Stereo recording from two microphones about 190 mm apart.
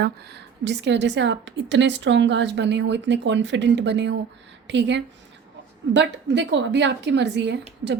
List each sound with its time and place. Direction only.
0.0 s a woman's voice: 60° right (ahead or behind)